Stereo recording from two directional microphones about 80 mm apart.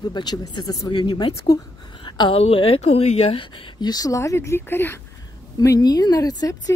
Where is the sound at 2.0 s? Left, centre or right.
Left.